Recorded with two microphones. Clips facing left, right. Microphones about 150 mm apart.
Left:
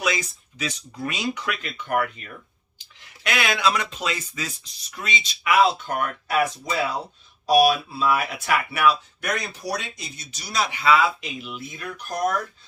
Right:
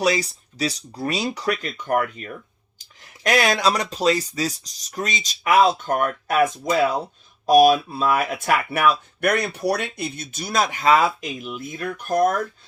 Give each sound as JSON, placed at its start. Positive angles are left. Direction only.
{"t": 0.0, "sound": "speech", "side_deg": -35}